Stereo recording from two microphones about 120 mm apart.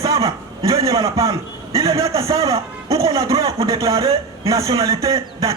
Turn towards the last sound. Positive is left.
turn(degrees=-25)  # may be behind; listen again after turning